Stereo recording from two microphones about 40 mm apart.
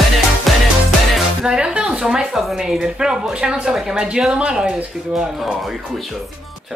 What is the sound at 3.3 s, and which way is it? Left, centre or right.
Speech, right.